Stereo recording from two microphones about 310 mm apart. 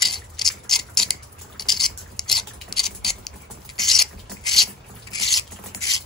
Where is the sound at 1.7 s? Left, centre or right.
Centre.